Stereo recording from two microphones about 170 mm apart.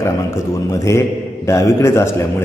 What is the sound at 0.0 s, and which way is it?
A man's voice, 15° left (ahead or behind).